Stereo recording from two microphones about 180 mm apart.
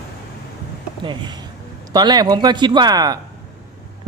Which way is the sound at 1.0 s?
25° right (ahead or behind).